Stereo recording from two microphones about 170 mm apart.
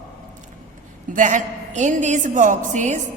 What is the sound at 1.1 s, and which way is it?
A woman's voice, 45° right (ahead or behind).